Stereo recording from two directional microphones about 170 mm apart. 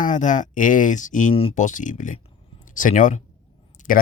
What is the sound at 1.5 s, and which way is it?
Speech, 45° left (ahead or behind).